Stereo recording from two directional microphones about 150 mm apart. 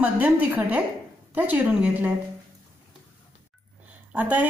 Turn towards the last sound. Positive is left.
turn(degrees=-10)  # may be behind; listen again after turning